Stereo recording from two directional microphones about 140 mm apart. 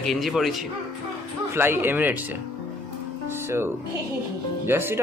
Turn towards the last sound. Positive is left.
turn(degrees=-15)  # may be behind; listen again after turning